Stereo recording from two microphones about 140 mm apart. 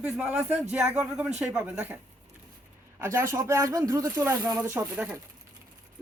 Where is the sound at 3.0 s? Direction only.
15° right (ahead or behind).